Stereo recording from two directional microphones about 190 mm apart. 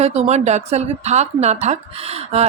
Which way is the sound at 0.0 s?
35° right (ahead or behind).